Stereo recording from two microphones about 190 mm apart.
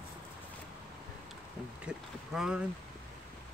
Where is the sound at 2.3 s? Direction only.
5° right (ahead or behind).